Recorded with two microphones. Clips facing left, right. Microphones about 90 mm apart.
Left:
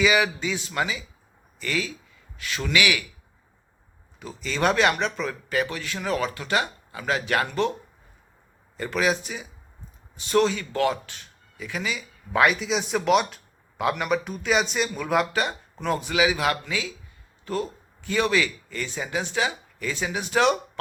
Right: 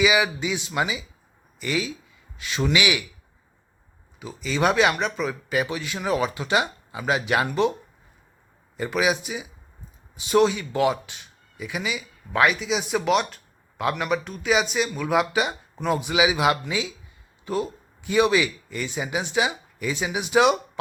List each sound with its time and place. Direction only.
0.0 s a man's voice: 10° right (ahead or behind)
4.2 s speech: 5° right (ahead or behind)
8.8 s speech: 10° right (ahead or behind)